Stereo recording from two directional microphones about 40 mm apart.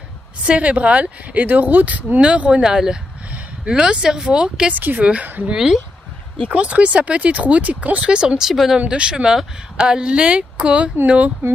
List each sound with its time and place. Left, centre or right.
0.5 s speech: right
2.1 s speech: right
2.6 s speech: centre
4.7 s a woman's voice: right
5.0 s speech: right
5.5 s speech: centre
6.5 s speech: right
8.0 s speech: right
8.4 s speech: centre
8.7 s speech: right